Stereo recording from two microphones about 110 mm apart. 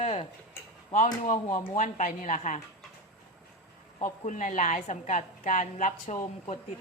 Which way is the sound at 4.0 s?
90° left.